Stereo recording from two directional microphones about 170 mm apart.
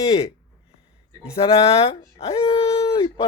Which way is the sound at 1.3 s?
35° left (ahead or behind).